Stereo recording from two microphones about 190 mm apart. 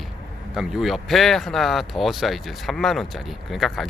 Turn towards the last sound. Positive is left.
turn(degrees=0)  # may be behind; listen again after turning